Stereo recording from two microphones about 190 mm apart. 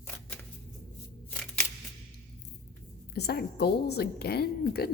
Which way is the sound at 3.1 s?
60° left (ahead or behind).